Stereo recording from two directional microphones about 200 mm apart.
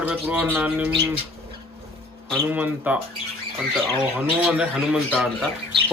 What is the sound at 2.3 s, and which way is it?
Speech, 5° right (ahead or behind).